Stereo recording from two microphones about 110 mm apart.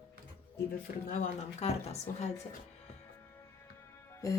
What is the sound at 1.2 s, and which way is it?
A woman's voice, 80° left.